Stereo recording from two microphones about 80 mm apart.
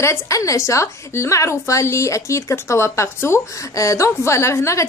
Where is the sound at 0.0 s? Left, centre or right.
Left.